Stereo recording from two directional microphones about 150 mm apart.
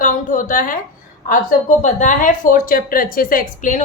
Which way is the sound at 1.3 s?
60° left (ahead or behind).